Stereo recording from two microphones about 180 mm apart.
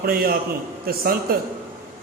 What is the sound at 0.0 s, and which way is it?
A man's voice, 55° right (ahead or behind).